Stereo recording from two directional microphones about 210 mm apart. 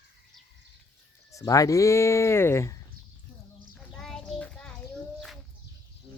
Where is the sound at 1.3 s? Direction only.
15° left (ahead or behind).